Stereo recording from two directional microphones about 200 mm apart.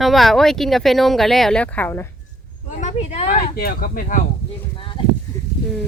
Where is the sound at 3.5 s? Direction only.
50° left (ahead or behind).